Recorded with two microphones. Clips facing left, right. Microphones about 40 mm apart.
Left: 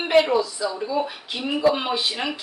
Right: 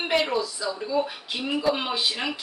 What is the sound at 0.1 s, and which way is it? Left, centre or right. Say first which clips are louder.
Speech: left 7 dB; centre.